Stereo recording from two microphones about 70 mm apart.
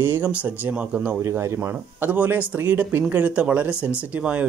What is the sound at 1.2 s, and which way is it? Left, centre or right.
Speech, right.